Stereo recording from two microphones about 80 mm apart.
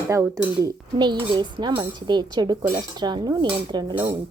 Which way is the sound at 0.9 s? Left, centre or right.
Right.